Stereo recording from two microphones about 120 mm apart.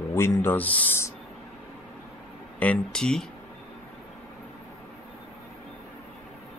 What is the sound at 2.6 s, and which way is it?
Speech, 10° left (ahead or behind).